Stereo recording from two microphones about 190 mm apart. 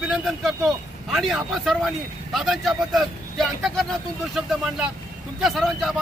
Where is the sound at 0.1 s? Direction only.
Centre (ahead or behind).